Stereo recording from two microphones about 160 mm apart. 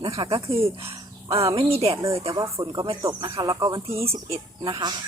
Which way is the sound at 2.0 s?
20° right (ahead or behind).